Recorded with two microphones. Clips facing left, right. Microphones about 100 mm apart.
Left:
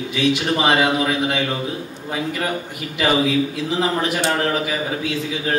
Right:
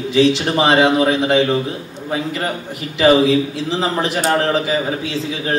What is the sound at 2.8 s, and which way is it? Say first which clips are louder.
A man's voice: right 7 dB; 30° right (ahead or behind).